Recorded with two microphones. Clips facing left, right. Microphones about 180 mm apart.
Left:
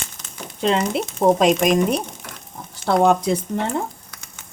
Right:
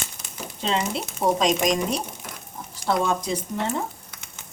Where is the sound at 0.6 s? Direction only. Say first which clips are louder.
Left 6 dB; 60° left (ahead or behind).